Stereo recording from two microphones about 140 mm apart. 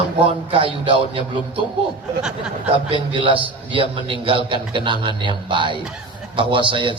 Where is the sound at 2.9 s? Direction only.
40° right (ahead or behind).